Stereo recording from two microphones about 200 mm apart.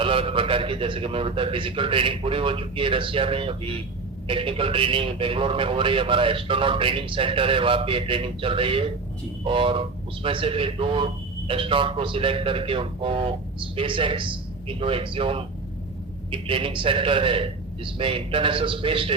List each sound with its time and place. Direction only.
0.0 s a man's voice: 25° right (ahead or behind)